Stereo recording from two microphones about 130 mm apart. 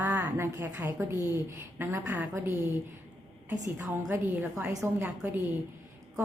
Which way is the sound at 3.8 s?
20° right (ahead or behind).